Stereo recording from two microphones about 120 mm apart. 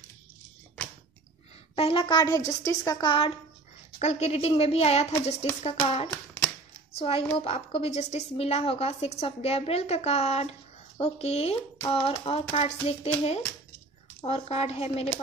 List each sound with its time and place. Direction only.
1.8 s a woman's voice: 50° left (ahead or behind); by 3.0 s 25° left (ahead or behind)
3.0 s a woman's voice: 45° left (ahead or behind)
4.0 s a woman's voice: 65° left (ahead or behind)
7.0 s a woman's voice: 55° left (ahead or behind)